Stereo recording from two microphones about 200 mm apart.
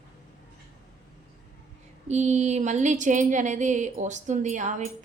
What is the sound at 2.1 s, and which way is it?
A woman's voice, 35° right (ahead or behind).